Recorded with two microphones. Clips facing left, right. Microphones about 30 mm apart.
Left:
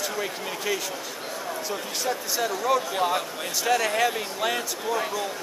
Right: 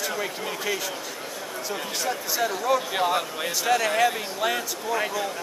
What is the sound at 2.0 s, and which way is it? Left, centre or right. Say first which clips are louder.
Speech: right 1 dB; centre.